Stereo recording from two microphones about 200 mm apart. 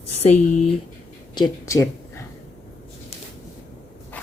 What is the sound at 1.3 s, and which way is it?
Speech, 20° left (ahead or behind).